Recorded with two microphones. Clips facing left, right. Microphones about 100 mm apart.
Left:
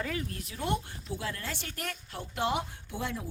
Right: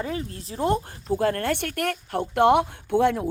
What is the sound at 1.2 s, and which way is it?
Speech, 55° right (ahead or behind).